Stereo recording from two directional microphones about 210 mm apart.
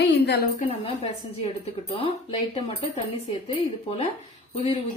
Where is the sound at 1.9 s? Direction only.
25° left (ahead or behind).